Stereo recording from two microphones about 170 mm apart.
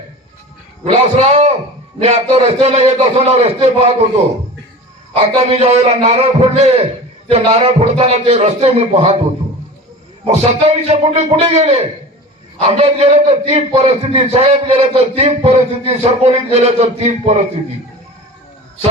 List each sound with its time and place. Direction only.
0.9 s a man's voice: 40° right (ahead or behind)
5.1 s a man's voice: 35° right (ahead or behind)
10.2 s a man's voice: 35° right (ahead or behind)